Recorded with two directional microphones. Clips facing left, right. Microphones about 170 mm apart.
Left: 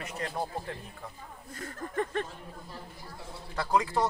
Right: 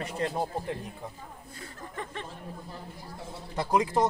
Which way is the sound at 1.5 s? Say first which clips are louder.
Left 7 dB; 50° left (ahead or behind).